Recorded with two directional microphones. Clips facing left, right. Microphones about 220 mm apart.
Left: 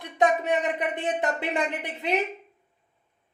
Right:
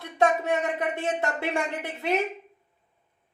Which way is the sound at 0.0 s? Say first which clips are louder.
Even; 15° left (ahead or behind).